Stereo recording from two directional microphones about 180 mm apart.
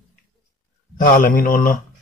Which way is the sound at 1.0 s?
50° left (ahead or behind).